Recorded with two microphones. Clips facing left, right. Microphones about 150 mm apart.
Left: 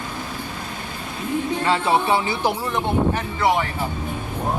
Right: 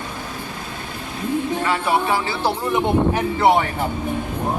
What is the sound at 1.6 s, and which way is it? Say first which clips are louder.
Speech: left 3 dB; 25° left (ahead or behind).